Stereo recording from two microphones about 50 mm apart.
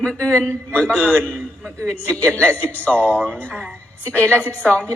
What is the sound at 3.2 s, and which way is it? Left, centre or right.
Speech, right.